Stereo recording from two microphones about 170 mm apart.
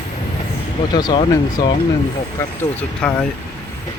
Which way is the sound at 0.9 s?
25° left (ahead or behind).